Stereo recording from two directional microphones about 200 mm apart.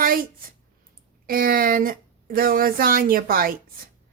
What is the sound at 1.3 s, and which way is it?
A woman's voice, 45° right (ahead or behind).